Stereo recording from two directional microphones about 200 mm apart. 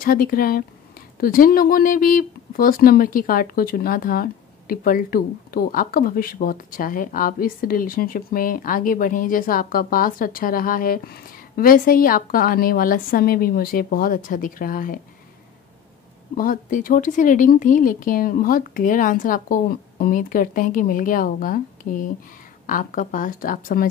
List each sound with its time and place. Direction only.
0.0 s speech: 45° left (ahead or behind)
16.3 s speech: 45° left (ahead or behind)